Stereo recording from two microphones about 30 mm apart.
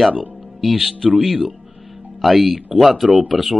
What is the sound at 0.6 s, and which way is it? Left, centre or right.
Speech, centre.